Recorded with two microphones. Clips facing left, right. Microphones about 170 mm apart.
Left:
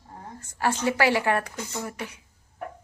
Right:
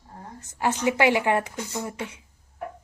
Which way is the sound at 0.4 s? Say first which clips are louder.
Right 1 dB; 15° right (ahead or behind).